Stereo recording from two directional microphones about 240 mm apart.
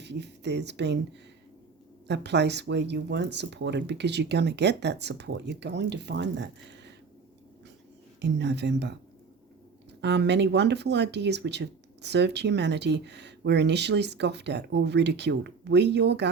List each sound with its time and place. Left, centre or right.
0.0 s speech: right
2.0 s speech: right
8.2 s speech: right
10.0 s speech: right